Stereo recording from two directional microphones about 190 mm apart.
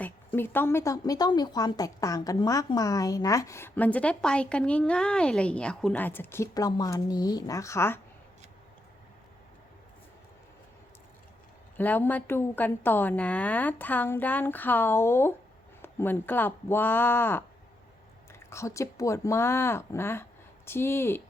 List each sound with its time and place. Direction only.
0.3 s a woman's voice: 10° left (ahead or behind)
11.8 s a woman's voice: 10° left (ahead or behind)